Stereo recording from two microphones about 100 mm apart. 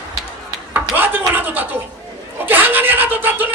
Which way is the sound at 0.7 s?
20° right (ahead or behind).